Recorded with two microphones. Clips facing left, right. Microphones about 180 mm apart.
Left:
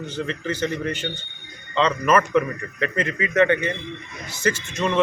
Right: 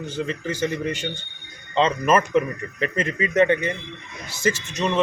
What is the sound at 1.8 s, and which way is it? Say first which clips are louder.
Speech: even; 25° right (ahead or behind).